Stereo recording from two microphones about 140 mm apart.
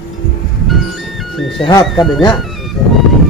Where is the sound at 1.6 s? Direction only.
35° left (ahead or behind).